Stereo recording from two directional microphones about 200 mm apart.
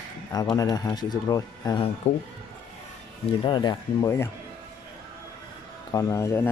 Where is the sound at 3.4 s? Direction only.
20° left (ahead or behind).